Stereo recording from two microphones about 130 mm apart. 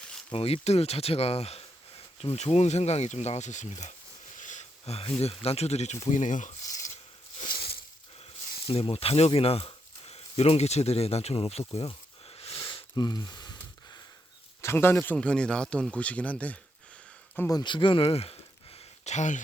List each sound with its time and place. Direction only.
0.3 s speech: 50° left (ahead or behind)
4.4 s a sound: 70° left (ahead or behind)
5.2 s speech: 50° left (ahead or behind); by 7.0 s 75° left (ahead or behind)
8.6 s speech: 45° left (ahead or behind)
12.4 s a sound: 50° left (ahead or behind)
12.6 s a sound: 35° left (ahead or behind)
14.6 s speech: 20° left (ahead or behind)
17.5 s speech: 35° left (ahead or behind)
19.0 s speech: 65° left (ahead or behind)